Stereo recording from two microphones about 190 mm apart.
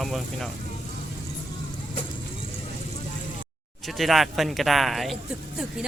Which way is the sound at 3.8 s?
Centre (ahead or behind).